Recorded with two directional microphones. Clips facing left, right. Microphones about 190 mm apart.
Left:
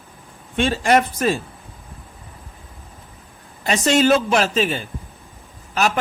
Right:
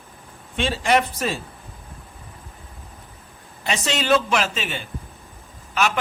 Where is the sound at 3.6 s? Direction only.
45° left (ahead or behind).